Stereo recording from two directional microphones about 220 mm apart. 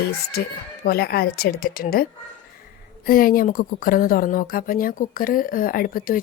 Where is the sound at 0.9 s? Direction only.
45° left (ahead or behind).